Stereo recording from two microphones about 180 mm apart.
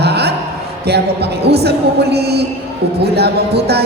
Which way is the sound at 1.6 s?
65° right (ahead or behind).